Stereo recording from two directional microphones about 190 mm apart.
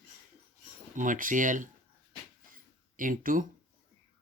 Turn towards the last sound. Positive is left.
turn(degrees=-45)  # may be behind; listen again after turning